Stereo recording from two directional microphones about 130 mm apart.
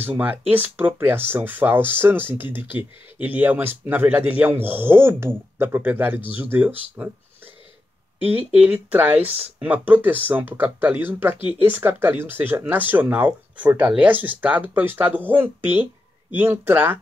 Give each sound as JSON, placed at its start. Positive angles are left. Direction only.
{"t": 0.5, "sound": "speech", "side_deg": -15}
{"t": 8.5, "sound": "speech", "side_deg": -10}